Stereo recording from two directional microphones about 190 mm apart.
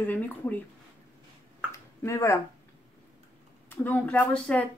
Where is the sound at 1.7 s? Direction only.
15° left (ahead or behind).